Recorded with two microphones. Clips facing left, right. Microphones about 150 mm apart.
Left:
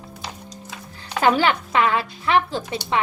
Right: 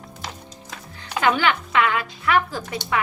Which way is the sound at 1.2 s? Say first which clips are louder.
Left 2 dB; 35° left (ahead or behind).